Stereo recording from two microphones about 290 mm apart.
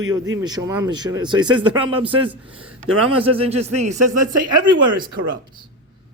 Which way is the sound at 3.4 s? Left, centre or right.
Right.